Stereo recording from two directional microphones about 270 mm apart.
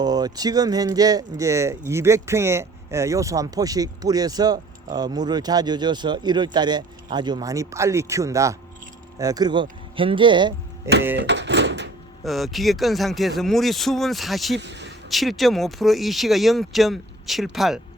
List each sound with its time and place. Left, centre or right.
0.0 s speech: centre
11.2 s a sound: right
12.2 s speech: centre
14.6 s speech: right
15.1 s speech: centre